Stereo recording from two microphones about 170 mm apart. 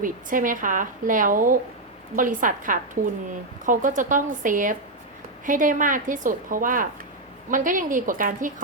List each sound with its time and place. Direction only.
0.0 s a woman's voice: 50° right (ahead or behind)